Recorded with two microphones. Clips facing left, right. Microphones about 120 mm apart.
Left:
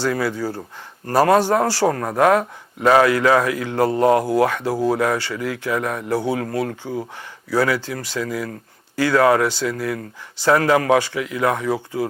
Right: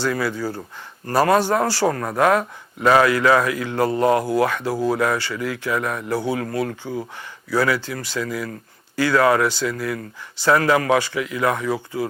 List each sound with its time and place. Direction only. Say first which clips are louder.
0.0 s speech: left 1 dB; 40° left (ahead or behind)